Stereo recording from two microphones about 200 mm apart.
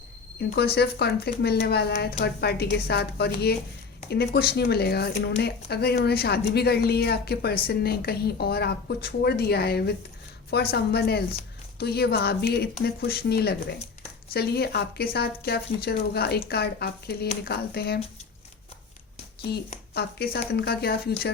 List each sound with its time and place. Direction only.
0.3 s a woman's voice: 55° left (ahead or behind)
19.9 s a woman's voice: 50° left (ahead or behind)